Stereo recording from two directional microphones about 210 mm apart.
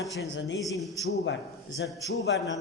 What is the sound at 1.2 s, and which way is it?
Speech, 60° left (ahead or behind).